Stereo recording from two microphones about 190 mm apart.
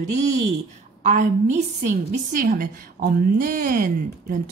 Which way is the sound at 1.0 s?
40° right (ahead or behind).